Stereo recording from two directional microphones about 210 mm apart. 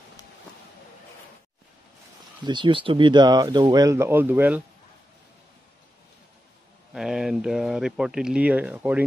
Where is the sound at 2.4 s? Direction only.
25° right (ahead or behind).